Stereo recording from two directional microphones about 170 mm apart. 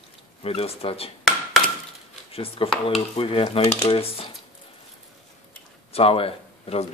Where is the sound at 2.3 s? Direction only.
35° left (ahead or behind).